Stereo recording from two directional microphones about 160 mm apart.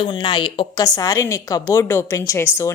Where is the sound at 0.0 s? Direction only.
30° left (ahead or behind).